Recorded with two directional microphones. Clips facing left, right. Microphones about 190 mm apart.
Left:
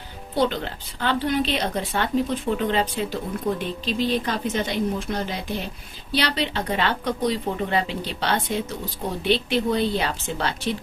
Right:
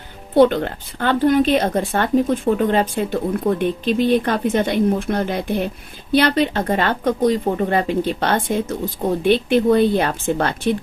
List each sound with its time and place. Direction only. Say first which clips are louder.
0.3 s speech: right 9 dB; 55° right (ahead or behind)